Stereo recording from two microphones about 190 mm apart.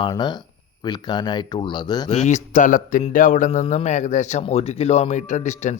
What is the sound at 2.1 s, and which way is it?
Speech, 40° left (ahead or behind).